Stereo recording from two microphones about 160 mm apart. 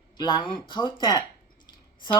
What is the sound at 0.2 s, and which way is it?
Speech, 30° left (ahead or behind).